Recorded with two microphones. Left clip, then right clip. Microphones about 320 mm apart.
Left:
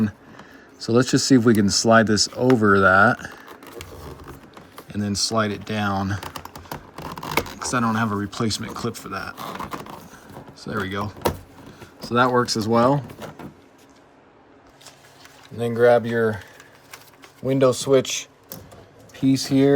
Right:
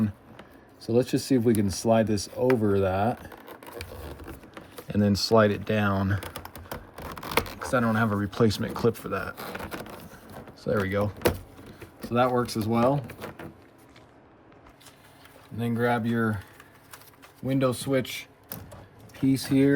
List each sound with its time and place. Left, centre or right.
0.8 s speech: left
4.9 s speech: centre
10.6 s speech: centre
11.9 s speech: centre
15.5 s speech: centre
17.5 s speech: centre